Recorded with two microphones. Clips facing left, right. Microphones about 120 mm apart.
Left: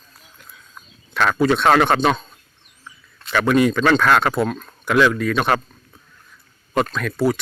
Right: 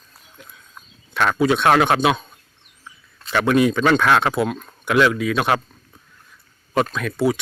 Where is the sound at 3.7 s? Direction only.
10° right (ahead or behind).